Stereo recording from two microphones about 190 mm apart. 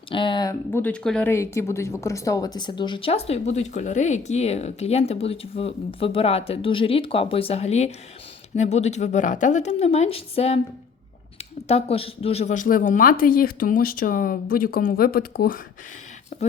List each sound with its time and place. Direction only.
0.1 s speech: 25° left (ahead or behind)
0.7 s a woman's voice: 10° left (ahead or behind); by 10.6 s 35° left (ahead or behind)
11.7 s speech: 30° left (ahead or behind); by 15.6 s 50° left (ahead or behind)
16.3 s a woman's voice: 40° left (ahead or behind)